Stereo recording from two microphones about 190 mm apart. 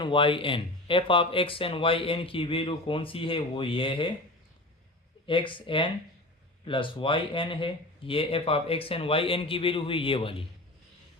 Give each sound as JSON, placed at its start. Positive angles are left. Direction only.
{"t": 0.0, "sound": "speech", "side_deg": 25}
{"t": 5.2, "sound": "speech", "side_deg": 25}